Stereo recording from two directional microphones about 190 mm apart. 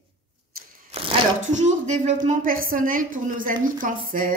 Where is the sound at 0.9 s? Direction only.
30° right (ahead or behind).